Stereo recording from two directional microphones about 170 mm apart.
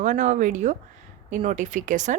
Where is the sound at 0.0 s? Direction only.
45° right (ahead or behind).